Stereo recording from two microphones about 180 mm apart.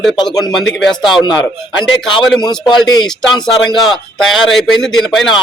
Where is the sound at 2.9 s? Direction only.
25° left (ahead or behind).